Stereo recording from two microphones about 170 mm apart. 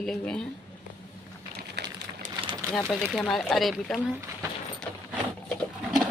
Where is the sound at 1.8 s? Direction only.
80° right.